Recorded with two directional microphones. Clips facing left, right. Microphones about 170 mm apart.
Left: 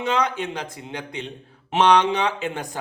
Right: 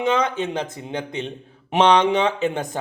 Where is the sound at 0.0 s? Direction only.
20° right (ahead or behind).